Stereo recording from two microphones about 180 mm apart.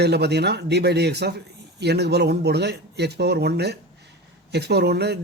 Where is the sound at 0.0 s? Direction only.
65° right (ahead or behind).